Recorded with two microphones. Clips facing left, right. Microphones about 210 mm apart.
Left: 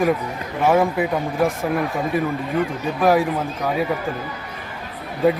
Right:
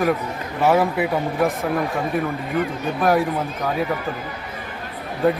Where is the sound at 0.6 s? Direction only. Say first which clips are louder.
Even; 5° right (ahead or behind).